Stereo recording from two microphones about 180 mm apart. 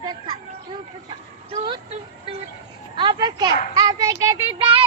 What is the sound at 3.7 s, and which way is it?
Speech, 20° right (ahead or behind).